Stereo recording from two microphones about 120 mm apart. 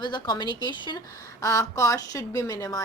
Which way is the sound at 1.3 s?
25° left (ahead or behind).